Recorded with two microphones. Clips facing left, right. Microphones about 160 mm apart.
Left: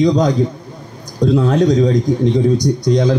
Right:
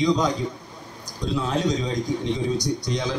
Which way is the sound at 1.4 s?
45° left (ahead or behind).